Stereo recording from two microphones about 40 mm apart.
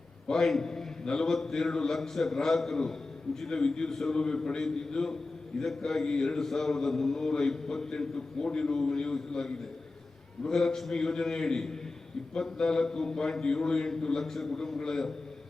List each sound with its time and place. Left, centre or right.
0.3 s a man's voice: centre